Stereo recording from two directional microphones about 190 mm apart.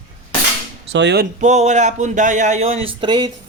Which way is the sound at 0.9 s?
65° right (ahead or behind).